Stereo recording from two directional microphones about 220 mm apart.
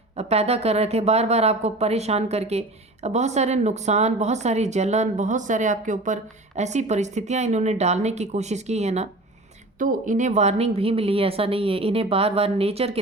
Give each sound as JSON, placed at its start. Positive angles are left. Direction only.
{"t": 0.2, "sound": "a woman's voice", "side_deg": -30}